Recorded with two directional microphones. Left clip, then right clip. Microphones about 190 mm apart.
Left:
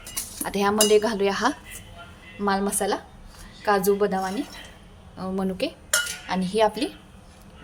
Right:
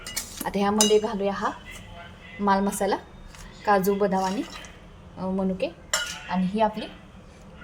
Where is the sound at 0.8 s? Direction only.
15° left (ahead or behind).